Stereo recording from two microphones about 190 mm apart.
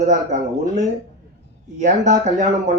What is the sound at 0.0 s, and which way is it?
Speech, 40° right (ahead or behind).